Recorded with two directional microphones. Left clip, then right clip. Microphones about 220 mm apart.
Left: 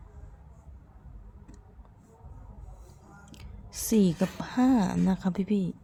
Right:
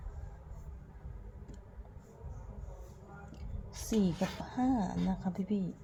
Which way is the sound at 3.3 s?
35° left (ahead or behind).